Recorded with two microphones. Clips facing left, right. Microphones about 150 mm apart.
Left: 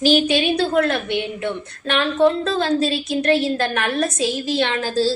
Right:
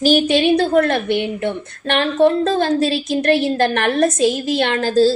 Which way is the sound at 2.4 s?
55° right (ahead or behind).